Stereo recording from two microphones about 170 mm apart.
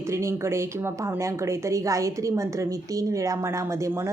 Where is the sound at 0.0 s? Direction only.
15° right (ahead or behind).